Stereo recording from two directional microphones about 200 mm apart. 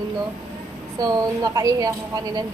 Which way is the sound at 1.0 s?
20° right (ahead or behind).